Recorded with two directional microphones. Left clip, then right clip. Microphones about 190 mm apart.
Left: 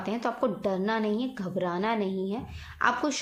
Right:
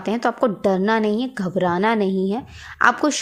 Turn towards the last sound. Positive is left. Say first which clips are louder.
# right 9 dB
turn(degrees=-50)  # may be behind; listen again after turning